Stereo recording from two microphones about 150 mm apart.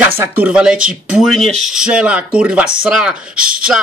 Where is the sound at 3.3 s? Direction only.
70° right (ahead or behind).